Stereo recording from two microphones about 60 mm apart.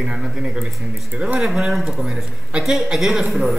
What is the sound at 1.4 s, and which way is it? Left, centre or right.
Speech, centre.